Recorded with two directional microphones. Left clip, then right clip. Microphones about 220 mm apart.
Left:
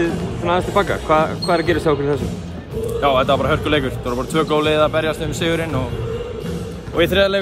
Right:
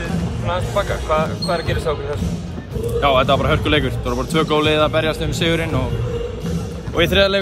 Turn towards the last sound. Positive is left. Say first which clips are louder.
# even
turn(degrees=5)  # may be behind; listen again after turning